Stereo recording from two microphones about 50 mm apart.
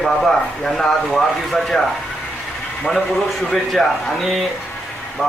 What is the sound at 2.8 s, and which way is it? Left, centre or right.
Speech, centre.